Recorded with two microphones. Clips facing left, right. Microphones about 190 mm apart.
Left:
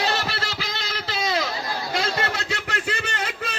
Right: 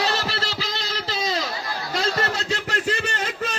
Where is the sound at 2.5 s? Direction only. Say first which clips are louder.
Right 3 dB; 40° right (ahead or behind).